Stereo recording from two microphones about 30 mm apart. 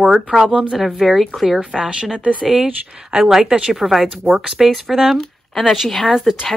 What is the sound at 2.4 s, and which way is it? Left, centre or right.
Speech, centre.